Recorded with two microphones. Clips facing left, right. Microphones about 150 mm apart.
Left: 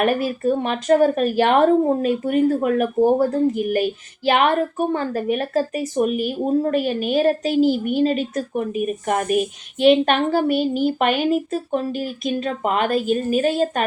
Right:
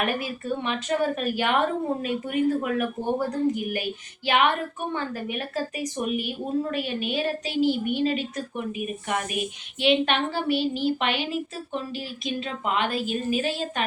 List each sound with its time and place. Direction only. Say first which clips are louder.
0.0 s speech: left 9 dB; 40° left (ahead or behind)
4.9 s a woman's voice: left 8 dB; 40° left (ahead or behind)